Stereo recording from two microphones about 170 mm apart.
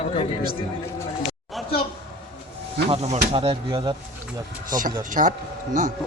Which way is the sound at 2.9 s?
40° right (ahead or behind).